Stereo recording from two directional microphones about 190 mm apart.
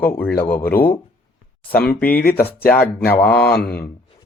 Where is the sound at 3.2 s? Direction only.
5° left (ahead or behind).